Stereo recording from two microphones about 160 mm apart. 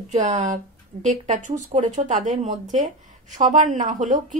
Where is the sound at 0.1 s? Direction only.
50° right (ahead or behind).